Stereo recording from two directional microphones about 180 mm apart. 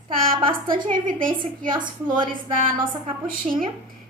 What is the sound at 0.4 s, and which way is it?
Speech, 30° right (ahead or behind).